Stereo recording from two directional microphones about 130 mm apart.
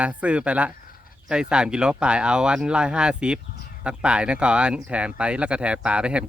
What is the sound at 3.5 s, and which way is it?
Fowl, 90° left.